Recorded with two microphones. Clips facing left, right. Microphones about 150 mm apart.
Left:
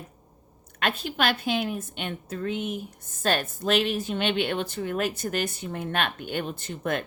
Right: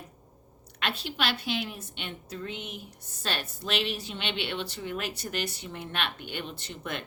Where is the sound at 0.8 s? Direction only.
50° left (ahead or behind).